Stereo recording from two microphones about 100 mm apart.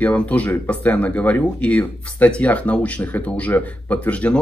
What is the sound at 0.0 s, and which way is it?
Speech, 15° left (ahead or behind).